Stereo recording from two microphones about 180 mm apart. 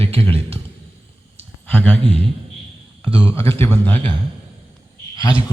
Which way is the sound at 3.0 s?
30° right (ahead or behind).